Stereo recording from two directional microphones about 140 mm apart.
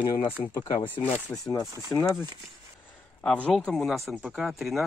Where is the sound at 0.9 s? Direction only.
40° left (ahead or behind).